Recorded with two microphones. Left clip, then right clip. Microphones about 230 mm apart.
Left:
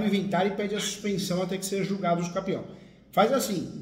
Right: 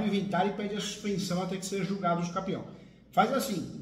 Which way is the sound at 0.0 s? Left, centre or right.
Centre.